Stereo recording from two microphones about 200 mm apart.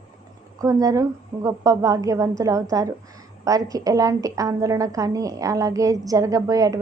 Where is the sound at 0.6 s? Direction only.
15° right (ahead or behind).